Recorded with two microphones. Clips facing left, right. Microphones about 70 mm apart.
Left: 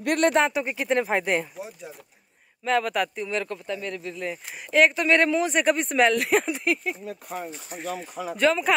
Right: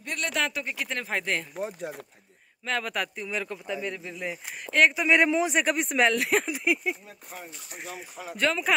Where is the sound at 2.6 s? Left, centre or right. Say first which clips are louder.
Left 6 dB; centre.